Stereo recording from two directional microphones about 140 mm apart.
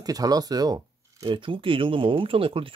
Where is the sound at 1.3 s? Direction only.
35° right (ahead or behind).